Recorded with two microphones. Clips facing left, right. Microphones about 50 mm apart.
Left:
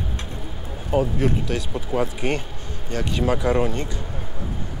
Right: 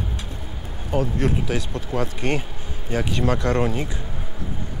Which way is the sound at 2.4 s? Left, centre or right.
Centre.